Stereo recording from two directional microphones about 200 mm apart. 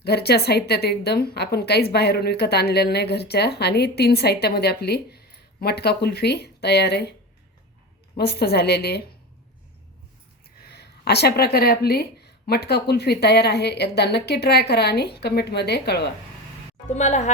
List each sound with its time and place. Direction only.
0.0 s a woman's voice: 55° left (ahead or behind)
8.1 s speech: 55° left (ahead or behind)
10.6 s speech: 55° left (ahead or behind)
16.9 s speech: 35° left (ahead or behind)